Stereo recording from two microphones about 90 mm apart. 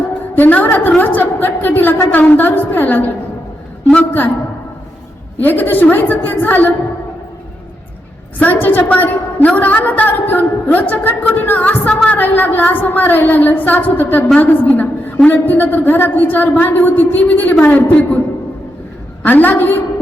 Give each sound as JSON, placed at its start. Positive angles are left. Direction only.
{"t": 0.3, "sound": "a woman's voice", "side_deg": 20}
{"t": 5.4, "sound": "a woman's voice", "side_deg": 20}
{"t": 8.4, "sound": "a woman's voice", "side_deg": 20}
{"t": 19.2, "sound": "a woman's voice", "side_deg": 20}